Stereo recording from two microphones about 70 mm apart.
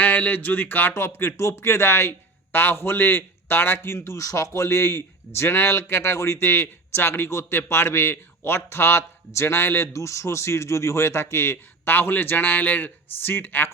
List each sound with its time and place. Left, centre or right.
0.0 s speech: left